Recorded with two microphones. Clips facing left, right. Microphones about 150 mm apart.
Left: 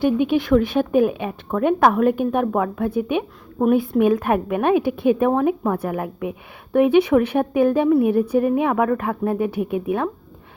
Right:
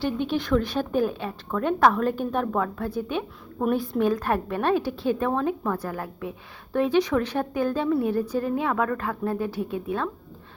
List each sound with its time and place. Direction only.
0.0 s speech: 15° left (ahead or behind)